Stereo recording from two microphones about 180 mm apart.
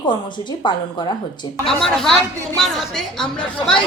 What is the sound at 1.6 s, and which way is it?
Speech, 5° left (ahead or behind).